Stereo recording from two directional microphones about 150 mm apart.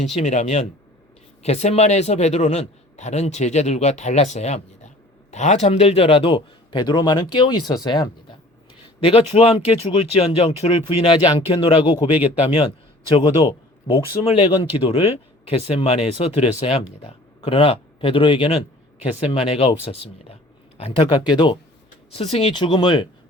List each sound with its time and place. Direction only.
0.1 s a man's voice: 45° left (ahead or behind); by 8.1 s 25° left (ahead or behind)
9.0 s speech: 40° left (ahead or behind)
12.2 s speech: 10° right (ahead or behind)
13.1 s speech: 40° left (ahead or behind)
22.1 s speech: 40° left (ahead or behind)